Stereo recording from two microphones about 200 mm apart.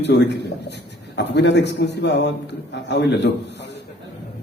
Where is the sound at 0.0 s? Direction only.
60° left (ahead or behind).